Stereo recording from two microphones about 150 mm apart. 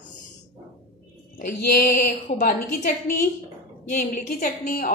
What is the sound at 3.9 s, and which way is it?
Speech, 60° left (ahead or behind).